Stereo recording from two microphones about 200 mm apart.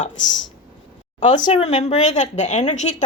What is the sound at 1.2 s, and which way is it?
A woman's voice, 35° left (ahead or behind).